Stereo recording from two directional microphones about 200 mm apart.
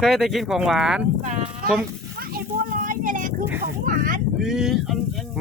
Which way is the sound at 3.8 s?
45° right (ahead or behind).